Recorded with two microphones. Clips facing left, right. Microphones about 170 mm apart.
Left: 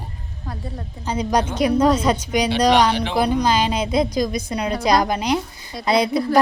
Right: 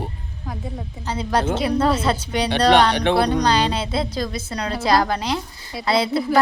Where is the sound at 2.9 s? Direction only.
65° right (ahead or behind).